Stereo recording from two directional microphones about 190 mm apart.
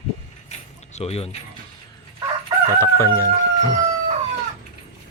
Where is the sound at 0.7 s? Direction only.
35° left (ahead or behind).